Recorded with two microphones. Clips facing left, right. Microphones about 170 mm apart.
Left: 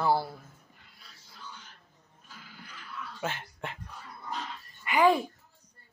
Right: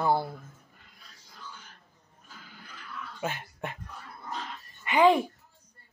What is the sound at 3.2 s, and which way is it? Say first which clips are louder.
Speech: right 2 dB; 10° right (ahead or behind).